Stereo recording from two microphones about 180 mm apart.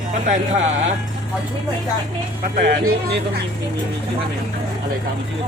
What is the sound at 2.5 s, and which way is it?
Speech, 45° right (ahead or behind).